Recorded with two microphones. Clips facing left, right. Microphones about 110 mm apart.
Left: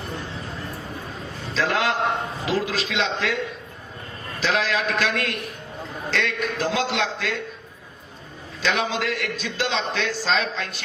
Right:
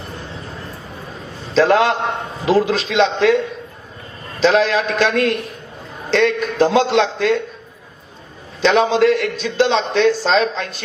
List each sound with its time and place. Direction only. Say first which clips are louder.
1.5 s a man's voice: right 9 dB; 30° right (ahead or behind)
8.6 s a man's voice: right 11 dB; 30° right (ahead or behind)